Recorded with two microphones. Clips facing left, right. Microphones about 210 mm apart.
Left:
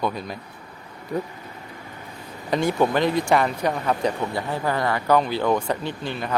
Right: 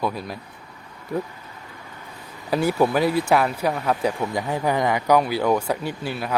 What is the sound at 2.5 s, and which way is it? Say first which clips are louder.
Speech: right 1 dB; 5° right (ahead or behind).